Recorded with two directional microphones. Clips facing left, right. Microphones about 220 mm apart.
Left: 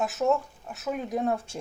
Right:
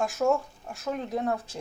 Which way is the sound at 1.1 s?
25° left (ahead or behind).